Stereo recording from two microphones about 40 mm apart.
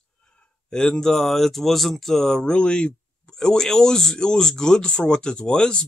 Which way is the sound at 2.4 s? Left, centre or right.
Left.